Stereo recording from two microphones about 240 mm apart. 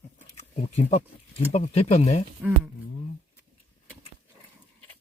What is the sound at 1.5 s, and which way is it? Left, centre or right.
Speech, left.